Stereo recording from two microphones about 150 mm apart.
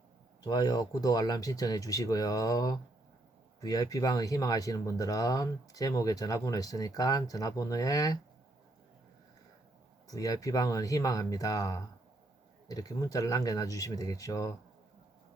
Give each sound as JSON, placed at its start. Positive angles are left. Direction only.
{"t": 0.4, "sound": "speech", "side_deg": 25}
{"t": 10.1, "sound": "speech", "side_deg": 25}